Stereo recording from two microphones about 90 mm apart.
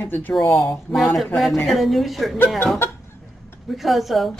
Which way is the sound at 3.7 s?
Centre (ahead or behind).